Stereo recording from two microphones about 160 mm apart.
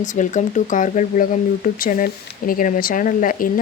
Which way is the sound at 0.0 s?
50° left (ahead or behind).